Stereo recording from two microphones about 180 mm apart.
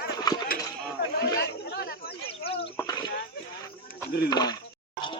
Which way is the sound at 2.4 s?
30° left (ahead or behind).